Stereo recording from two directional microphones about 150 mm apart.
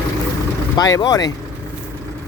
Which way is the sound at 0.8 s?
25° left (ahead or behind).